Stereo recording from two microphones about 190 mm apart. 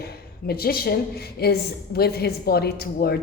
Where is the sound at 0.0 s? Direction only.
55° left (ahead or behind).